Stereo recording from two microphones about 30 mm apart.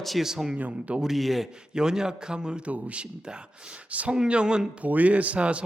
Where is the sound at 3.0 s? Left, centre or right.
Right.